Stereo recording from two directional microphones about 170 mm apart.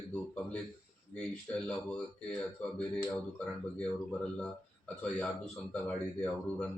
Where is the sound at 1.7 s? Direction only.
5° left (ahead or behind).